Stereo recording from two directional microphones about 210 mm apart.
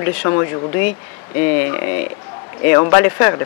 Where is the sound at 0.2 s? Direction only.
20° left (ahead or behind).